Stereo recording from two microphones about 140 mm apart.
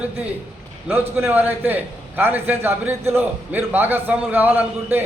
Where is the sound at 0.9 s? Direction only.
15° right (ahead or behind).